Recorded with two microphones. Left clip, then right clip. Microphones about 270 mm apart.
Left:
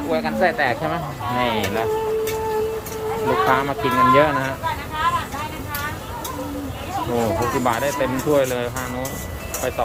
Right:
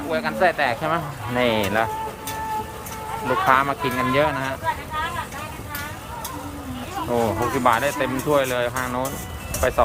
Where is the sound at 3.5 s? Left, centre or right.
Centre.